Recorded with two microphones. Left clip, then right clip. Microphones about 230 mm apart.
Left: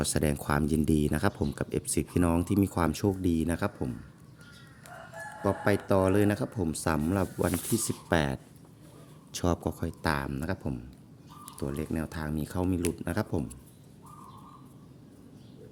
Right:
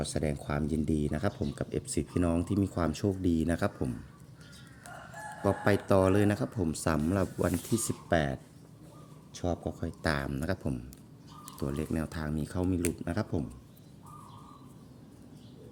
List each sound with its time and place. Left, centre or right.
0.0 s speech: left; by 3.9 s centre
5.4 s speech: centre
8.1 s speech: centre
9.3 s speech: left
9.8 s speech: centre